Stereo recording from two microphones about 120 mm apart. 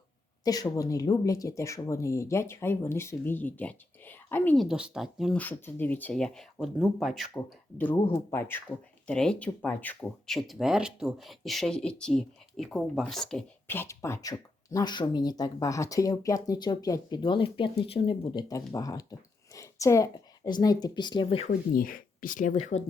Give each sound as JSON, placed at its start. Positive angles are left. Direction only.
{"t": 0.4, "sound": "speech", "side_deg": 30}
{"t": 4.5, "sound": "speech", "side_deg": 0}
{"t": 5.3, "sound": "speech", "side_deg": 15}
{"t": 7.3, "sound": "speech", "side_deg": 15}
{"t": 9.0, "sound": "speech", "side_deg": 10}
{"t": 10.2, "sound": "speech", "side_deg": 0}
{"t": 13.7, "sound": "speech", "side_deg": 20}
{"t": 17.2, "sound": "speech", "side_deg": 45}
{"t": 18.5, "sound": "a woman's voice", "side_deg": 30}
{"t": 21.2, "sound": "speech", "side_deg": 55}
{"t": 22.4, "sound": "speech", "side_deg": 85}